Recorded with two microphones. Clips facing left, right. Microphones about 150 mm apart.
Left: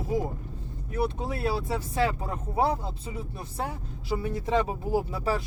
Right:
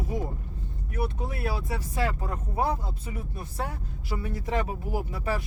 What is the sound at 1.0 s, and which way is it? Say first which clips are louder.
Speech: left 3 dB; 30° left (ahead or behind).